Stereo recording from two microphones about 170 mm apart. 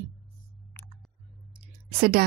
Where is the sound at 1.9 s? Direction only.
65° right (ahead or behind).